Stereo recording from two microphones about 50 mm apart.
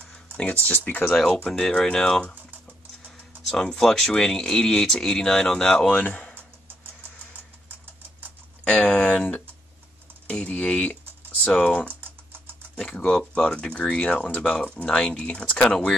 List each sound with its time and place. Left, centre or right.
0.1 s speech: left
1.1 s speech: centre
3.5 s speech: centre
5.9 s speech: left
8.6 s speech: left
10.3 s speech: left
14.1 s speech: left